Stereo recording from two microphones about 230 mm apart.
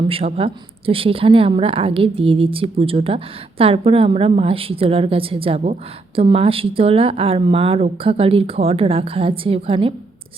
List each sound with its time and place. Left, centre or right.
0.1 s speech: right